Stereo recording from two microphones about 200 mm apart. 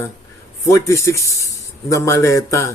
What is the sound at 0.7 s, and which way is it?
Speech, 15° left (ahead or behind).